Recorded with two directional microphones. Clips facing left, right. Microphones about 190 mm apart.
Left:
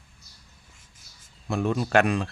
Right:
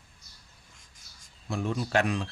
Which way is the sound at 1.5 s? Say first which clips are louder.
Left 5 dB; 65° left (ahead or behind).